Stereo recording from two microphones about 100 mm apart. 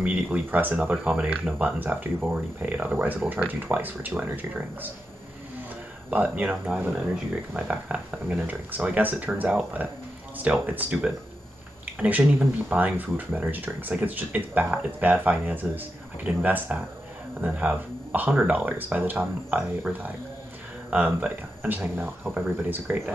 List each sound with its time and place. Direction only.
0.0 s speech: 15° right (ahead or behind)
6.0 s speech: 15° right (ahead or behind)